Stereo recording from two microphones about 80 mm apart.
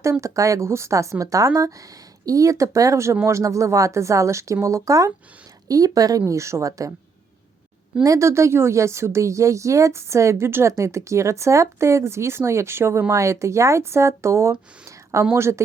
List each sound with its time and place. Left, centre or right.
0.0 s speech: right
8.0 s speech: right
14.8 s a sound: right
15.3 s speech: right